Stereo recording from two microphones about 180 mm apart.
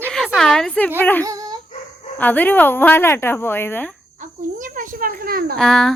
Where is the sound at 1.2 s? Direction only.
20° right (ahead or behind).